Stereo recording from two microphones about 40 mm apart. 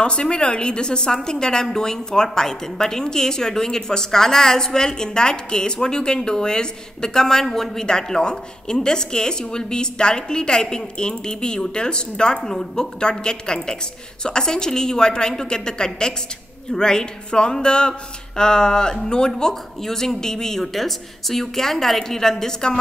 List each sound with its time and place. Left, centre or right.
0.0 s a woman's voice: left